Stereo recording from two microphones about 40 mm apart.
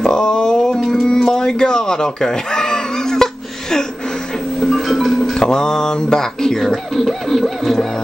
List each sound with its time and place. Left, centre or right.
0.0 s a sound: centre
4.6 s music: centre
5.4 s speech: centre